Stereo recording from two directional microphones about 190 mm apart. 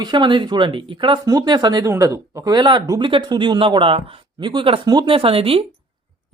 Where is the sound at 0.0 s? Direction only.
25° right (ahead or behind).